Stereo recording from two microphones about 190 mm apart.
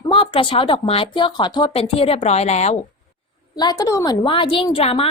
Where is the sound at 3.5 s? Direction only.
20° left (ahead or behind).